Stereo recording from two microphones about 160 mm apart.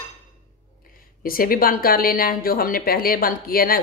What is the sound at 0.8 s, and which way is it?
A woman's voice, 65° left (ahead or behind).